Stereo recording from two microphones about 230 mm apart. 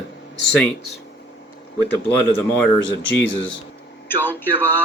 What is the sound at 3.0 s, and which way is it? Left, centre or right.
Speech, left.